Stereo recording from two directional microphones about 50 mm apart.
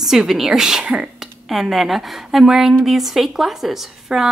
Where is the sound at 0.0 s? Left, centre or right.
Centre.